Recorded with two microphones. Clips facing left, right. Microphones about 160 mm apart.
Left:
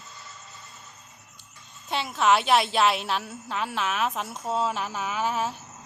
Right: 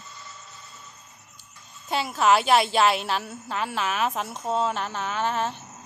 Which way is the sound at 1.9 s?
Centre (ahead or behind).